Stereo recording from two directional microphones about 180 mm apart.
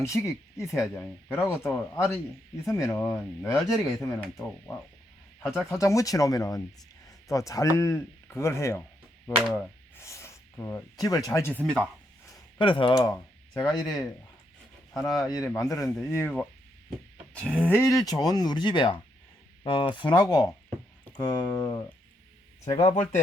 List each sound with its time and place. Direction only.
0.0 s speech: 15° left (ahead or behind)
9.3 s speech: centre (ahead or behind)
10.0 s speech: 15° left (ahead or behind)
12.5 s speech: 25° left (ahead or behind); by 13.7 s 10° left (ahead or behind)
13.7 s speech: 20° left (ahead or behind)
17.5 s speech: 10° left (ahead or behind)
22.8 s speech: 40° left (ahead or behind)